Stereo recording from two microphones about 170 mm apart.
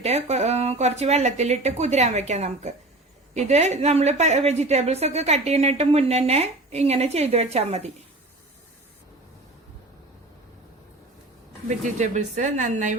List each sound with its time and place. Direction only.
0.0 s a woman's voice: 40° right (ahead or behind)
11.7 s speech: 45° right (ahead or behind)